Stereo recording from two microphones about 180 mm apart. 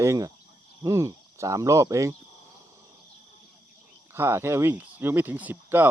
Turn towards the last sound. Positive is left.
turn(degrees=-10)  # may be behind; listen again after turning